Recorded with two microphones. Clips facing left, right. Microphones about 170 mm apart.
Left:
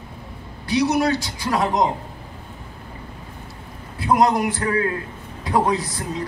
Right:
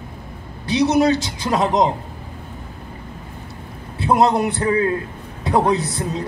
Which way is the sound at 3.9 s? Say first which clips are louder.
Right 2 dB; 25° right (ahead or behind).